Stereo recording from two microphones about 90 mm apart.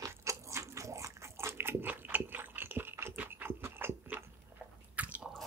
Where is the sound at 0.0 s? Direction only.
35° right (ahead or behind); by 5.3 s 15° right (ahead or behind).